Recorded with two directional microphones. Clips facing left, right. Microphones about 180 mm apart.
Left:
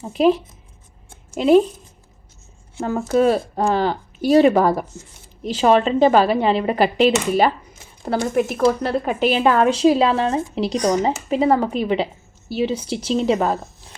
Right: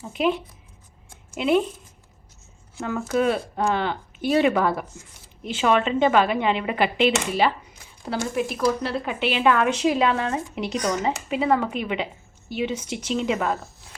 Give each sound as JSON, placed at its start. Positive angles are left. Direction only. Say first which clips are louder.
{"t": 0.0, "sound": "speech", "louder": "left 7 dB", "side_deg": 35}
{"t": 1.1, "sound": "a sound", "louder": "left 7 dB", "side_deg": 35}
{"t": 2.7, "sound": "speech", "louder": "left 5 dB", "side_deg": 30}